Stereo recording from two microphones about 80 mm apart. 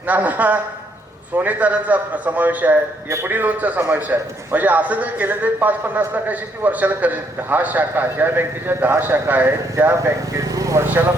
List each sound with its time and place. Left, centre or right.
0.1 s a man's voice: centre; by 10.8 s right
10.8 s a man's voice: right